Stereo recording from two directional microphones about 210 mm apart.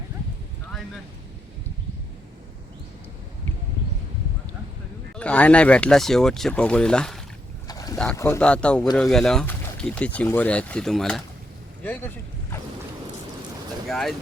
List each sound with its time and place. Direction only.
5.1 s speech: 5° left (ahead or behind)
7.7 s boat: 15° left (ahead or behind)
7.9 s speech: 10° left (ahead or behind)
13.8 s speech: centre (ahead or behind)